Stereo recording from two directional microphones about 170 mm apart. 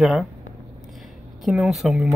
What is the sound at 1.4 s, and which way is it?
Speech, centre (ahead or behind).